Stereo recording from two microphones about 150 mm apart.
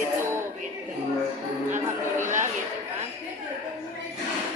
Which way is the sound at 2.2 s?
55° right (ahead or behind).